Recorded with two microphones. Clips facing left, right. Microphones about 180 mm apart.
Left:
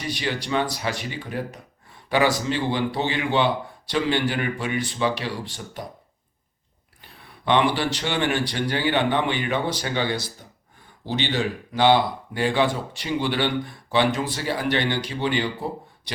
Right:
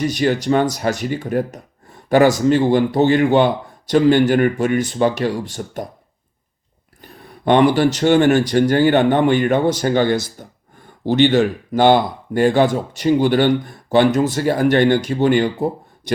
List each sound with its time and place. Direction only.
0.0 s speech: 45° right (ahead or behind)
7.0 s speech: 45° right (ahead or behind)